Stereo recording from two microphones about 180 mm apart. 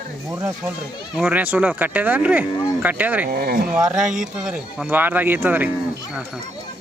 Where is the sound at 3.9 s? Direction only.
5° right (ahead or behind).